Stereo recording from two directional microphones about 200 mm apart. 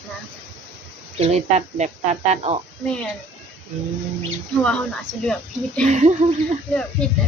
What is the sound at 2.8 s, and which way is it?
Speech, 5° left (ahead or behind).